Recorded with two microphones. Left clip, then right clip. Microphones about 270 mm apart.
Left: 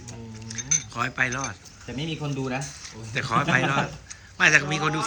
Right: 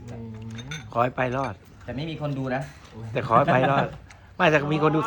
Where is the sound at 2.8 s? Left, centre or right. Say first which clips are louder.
Even; centre.